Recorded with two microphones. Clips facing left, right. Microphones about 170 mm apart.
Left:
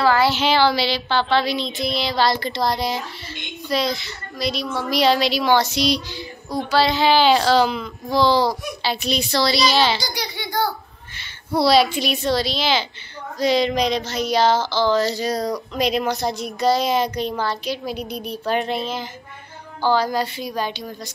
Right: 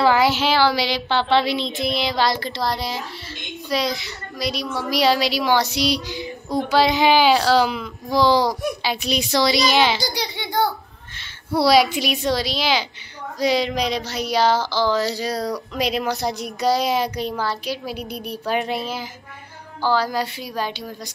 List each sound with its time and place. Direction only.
0.0 s a sound: 15° right (ahead or behind)
0.4 s a woman's voice: 5° right (ahead or behind)
1.0 s a woman's voice: 25° right (ahead or behind)
2.4 s a woman's voice: 5° right (ahead or behind)